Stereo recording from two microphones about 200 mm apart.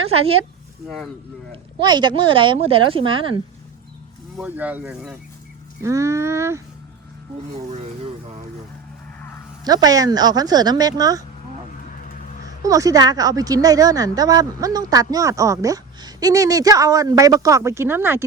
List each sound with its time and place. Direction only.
0.1 s speech: 30° right (ahead or behind)
0.9 s speech: centre (ahead or behind)
1.8 s speech: 20° right (ahead or behind)
4.4 s speech: 10° right (ahead or behind)
5.8 s a woman's voice: 15° right (ahead or behind)
7.7 s speech: 35° right (ahead or behind)
9.6 s speech: 20° right (ahead or behind)
12.6 s a woman's voice: 15° right (ahead or behind)